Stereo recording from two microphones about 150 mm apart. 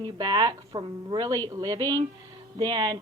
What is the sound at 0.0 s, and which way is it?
A woman's voice, 25° right (ahead or behind).